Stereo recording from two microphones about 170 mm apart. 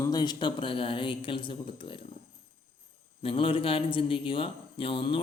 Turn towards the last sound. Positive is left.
turn(degrees=30)  # may be behind; listen again after turning